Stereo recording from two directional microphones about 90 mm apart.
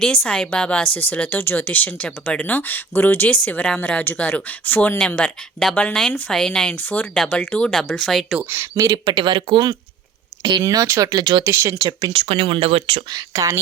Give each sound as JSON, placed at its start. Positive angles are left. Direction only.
{"t": 0.0, "sound": "speech", "side_deg": 10}
{"t": 8.4, "sound": "speech", "side_deg": -30}
{"t": 9.1, "sound": "speech", "side_deg": -65}
{"t": 10.4, "sound": "speech", "side_deg": -50}
{"t": 11.1, "sound": "speech", "side_deg": -55}
{"t": 11.4, "sound": "speech", "side_deg": -30}
{"t": 11.8, "sound": "speech", "side_deg": -45}
{"t": 12.1, "sound": "speech", "side_deg": -80}
{"t": 13.1, "sound": "speech", "side_deg": -40}